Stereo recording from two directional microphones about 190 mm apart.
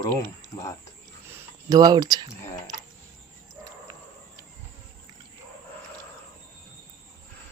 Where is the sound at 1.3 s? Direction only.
15° right (ahead or behind).